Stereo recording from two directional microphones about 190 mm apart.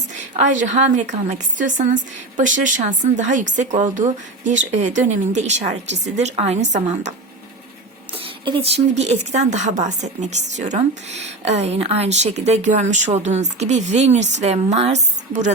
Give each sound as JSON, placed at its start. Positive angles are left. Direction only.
{"t": 0.1, "sound": "a woman's voice", "side_deg": -40}
{"t": 8.1, "sound": "a woman's voice", "side_deg": -30}